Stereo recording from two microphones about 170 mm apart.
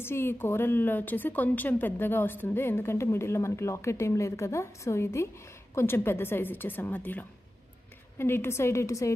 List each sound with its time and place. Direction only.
0.0 s a woman's voice: 15° left (ahead or behind)